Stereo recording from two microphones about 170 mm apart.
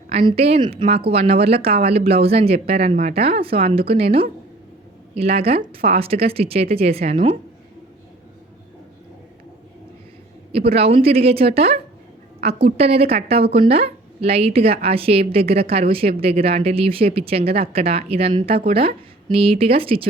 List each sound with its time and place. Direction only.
0.1 s speech: 35° right (ahead or behind)
10.5 s speech: 35° right (ahead or behind)